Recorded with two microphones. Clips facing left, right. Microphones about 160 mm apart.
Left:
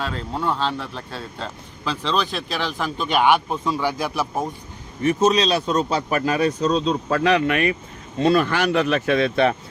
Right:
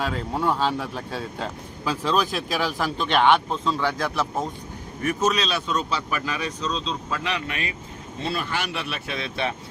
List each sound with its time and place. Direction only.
0.0 s speech: 10° right (ahead or behind); by 4.4 s 15° left (ahead or behind)
5.0 s speech: 30° left (ahead or behind); by 9.6 s 50° left (ahead or behind)